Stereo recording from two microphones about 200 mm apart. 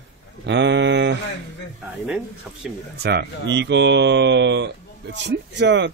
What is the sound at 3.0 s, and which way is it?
Speech, 55° right (ahead or behind).